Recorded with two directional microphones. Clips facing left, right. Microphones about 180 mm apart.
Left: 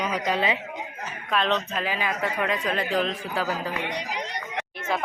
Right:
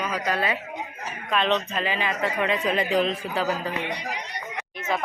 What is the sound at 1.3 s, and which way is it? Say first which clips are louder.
A woman's voice: right 1 dB; centre (ahead or behind).